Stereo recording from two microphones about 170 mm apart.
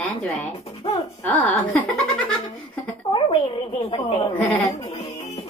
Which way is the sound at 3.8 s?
35° left (ahead or behind).